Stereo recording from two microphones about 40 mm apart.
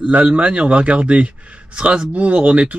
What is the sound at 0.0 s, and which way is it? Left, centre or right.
Speech, right.